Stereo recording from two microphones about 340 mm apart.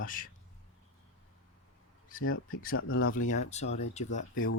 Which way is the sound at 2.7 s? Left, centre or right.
Left.